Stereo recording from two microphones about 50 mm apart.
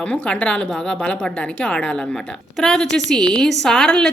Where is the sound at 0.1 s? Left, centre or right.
Left.